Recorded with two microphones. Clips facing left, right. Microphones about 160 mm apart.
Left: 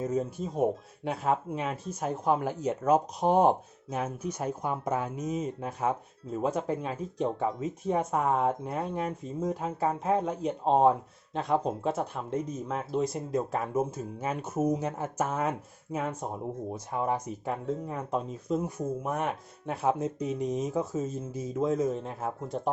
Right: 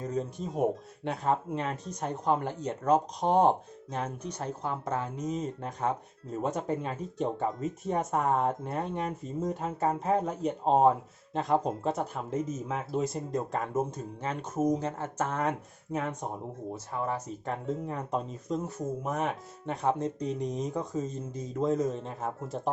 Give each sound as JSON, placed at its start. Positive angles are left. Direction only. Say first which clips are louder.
{"t": 0.0, "sound": "speech", "louder": "left 3 dB", "side_deg": 5}
{"t": 16.7, "sound": "speech", "louder": "left 2 dB", "side_deg": 15}